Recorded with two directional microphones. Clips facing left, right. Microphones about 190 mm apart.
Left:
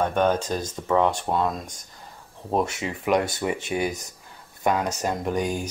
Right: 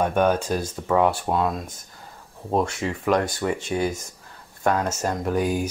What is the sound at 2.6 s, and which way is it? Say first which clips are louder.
Speech: right 2 dB; 20° left (ahead or behind).